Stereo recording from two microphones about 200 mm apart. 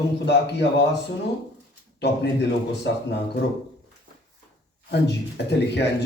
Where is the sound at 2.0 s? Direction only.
55° left (ahead or behind).